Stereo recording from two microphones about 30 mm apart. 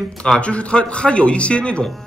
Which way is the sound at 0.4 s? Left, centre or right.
Left.